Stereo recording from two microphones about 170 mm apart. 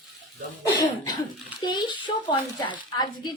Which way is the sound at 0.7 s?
25° left (ahead or behind).